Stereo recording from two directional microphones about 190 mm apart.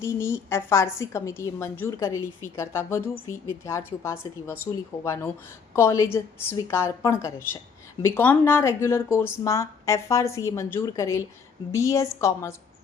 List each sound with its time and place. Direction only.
0.0 s a woman's voice: 15° left (ahead or behind)